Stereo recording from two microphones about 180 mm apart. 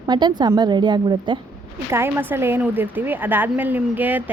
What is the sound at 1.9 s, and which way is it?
Speech, 15° right (ahead or behind).